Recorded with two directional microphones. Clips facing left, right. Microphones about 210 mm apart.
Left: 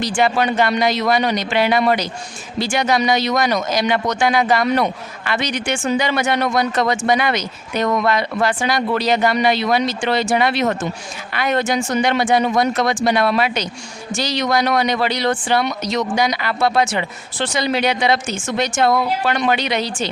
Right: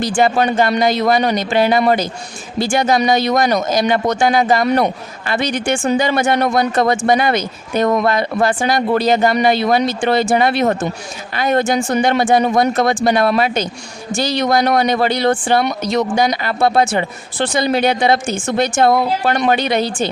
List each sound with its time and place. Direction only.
0.0 s speech: 50° right (ahead or behind)
7.9 s speech: 30° right (ahead or behind)
8.1 s speech: 50° right (ahead or behind)